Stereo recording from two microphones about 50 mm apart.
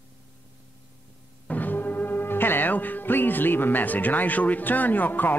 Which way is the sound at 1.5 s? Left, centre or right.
Left.